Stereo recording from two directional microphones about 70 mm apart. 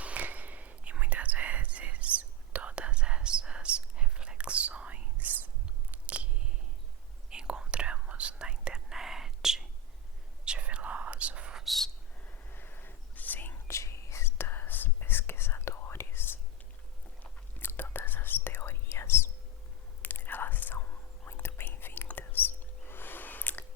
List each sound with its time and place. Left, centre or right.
0.0 s whispering: right
5.9 s biting: centre
7.3 s whispering: centre
11.6 s a sound: centre
12.5 s a sound: left
13.7 s whispering: left
17.6 s whispering: left